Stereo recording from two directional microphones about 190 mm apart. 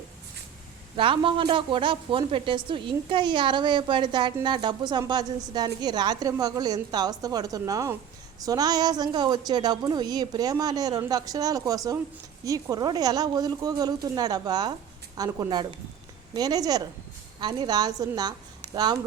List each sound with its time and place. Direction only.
0.9 s a woman's voice: 25° right (ahead or behind)